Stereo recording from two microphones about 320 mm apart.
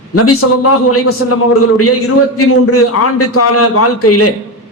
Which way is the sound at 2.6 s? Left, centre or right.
Left.